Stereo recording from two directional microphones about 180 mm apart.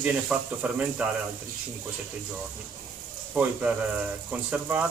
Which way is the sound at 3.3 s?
5° right (ahead or behind).